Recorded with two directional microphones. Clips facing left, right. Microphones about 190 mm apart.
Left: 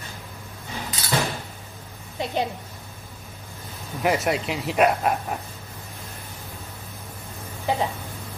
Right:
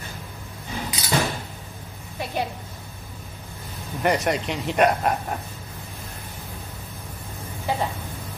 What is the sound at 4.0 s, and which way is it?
Speech, centre (ahead or behind).